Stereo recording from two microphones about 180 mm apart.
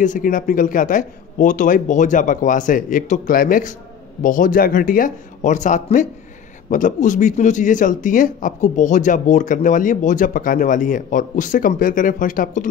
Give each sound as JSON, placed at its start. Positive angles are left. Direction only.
{"t": 0.0, "sound": "speech", "side_deg": 45}